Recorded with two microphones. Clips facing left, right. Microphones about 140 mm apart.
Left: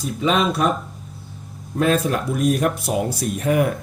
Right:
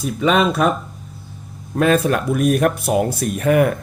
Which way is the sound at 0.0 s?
60° right (ahead or behind).